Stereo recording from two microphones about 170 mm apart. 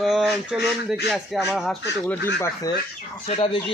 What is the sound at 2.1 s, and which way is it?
Speech, 15° left (ahead or behind).